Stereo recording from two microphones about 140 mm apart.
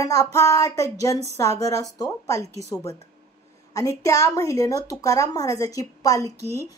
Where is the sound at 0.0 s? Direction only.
25° left (ahead or behind).